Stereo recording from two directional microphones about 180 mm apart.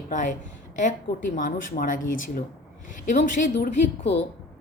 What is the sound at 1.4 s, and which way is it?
Speech, 45° left (ahead or behind).